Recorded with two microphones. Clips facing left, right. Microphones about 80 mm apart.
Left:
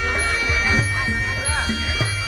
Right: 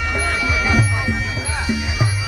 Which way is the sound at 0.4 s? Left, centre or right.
Centre.